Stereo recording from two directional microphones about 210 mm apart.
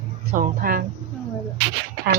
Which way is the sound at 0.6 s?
45° right (ahead or behind).